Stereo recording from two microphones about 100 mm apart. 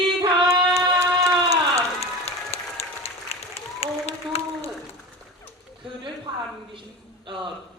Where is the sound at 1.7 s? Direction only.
85° left.